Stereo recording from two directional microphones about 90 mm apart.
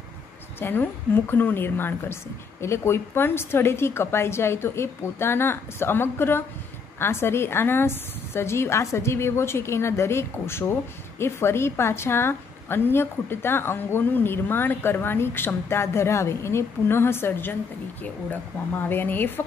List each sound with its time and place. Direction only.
0.6 s a woman's voice: 25° left (ahead or behind)
18.9 s a woman's voice: 20° left (ahead or behind)